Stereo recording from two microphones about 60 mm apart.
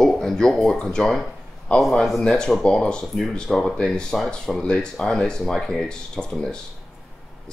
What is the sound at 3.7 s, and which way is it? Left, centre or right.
Speech, centre.